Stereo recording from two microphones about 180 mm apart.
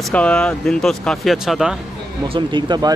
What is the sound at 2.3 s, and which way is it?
Speech, 25° right (ahead or behind).